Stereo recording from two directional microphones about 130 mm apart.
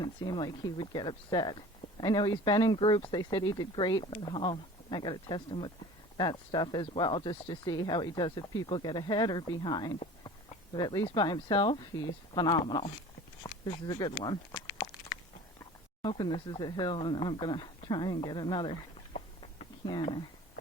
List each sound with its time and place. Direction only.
0.0 s speech: 35° left (ahead or behind)
16.0 s speech: 35° left (ahead or behind)
19.9 s speech: 40° left (ahead or behind)